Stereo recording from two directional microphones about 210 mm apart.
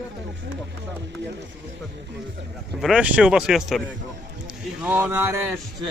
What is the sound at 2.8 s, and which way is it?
Speech, 5° right (ahead or behind).